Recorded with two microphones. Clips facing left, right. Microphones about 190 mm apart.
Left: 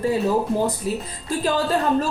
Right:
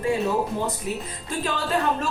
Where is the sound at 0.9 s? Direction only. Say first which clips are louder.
Left 4 dB; 35° left (ahead or behind).